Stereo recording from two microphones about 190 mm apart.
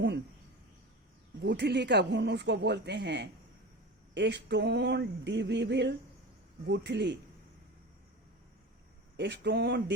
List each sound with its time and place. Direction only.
1.4 s speech: 65° right (ahead or behind)
9.1 s speech: 65° right (ahead or behind)